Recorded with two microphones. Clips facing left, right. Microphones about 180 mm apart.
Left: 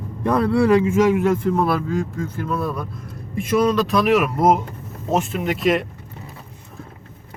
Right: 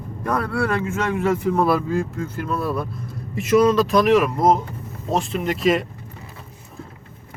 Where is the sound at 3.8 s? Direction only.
Centre (ahead or behind).